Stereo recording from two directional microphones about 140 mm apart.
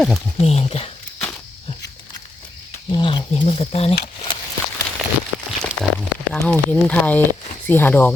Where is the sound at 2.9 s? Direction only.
35° left (ahead or behind).